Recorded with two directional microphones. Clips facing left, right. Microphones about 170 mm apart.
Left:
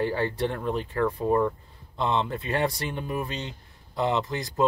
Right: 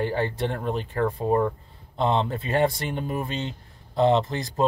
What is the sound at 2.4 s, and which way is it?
Speech, 25° right (ahead or behind).